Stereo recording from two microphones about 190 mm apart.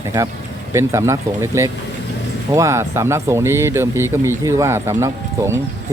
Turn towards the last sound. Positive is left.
turn(degrees=-15)  # may be behind; listen again after turning